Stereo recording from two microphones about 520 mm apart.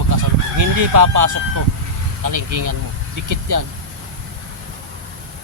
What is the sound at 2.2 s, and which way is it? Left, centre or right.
Speech, right.